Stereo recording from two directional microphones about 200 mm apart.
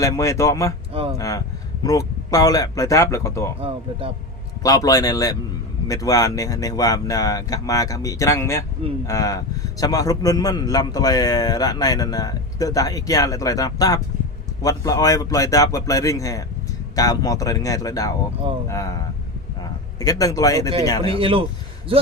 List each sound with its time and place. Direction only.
0.0 s speech: 15° left (ahead or behind)
0.9 s speech: 30° right (ahead or behind)
1.8 s speech: 15° left (ahead or behind)
4.6 s a man's voice: 15° left (ahead or behind)
20.0 s speech: 20° left (ahead or behind)
21.0 s speech: 25° right (ahead or behind)